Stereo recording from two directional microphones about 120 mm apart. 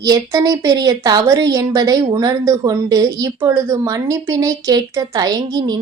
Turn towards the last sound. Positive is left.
turn(degrees=-35)  # may be behind; listen again after turning